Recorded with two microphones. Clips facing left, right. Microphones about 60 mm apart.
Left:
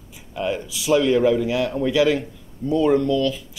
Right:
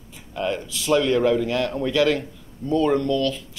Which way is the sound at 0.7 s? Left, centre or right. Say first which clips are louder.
Left 2 dB; centre.